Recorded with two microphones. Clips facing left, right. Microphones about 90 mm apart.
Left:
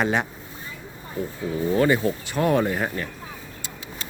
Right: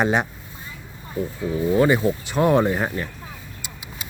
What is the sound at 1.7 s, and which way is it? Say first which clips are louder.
Speech: right 2 dB; 20° right (ahead or behind).